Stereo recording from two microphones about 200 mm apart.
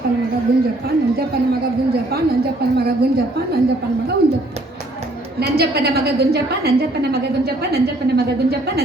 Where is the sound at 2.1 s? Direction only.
50° right (ahead or behind).